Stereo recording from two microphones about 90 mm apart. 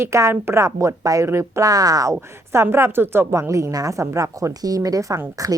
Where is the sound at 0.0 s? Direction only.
35° right (ahead or behind).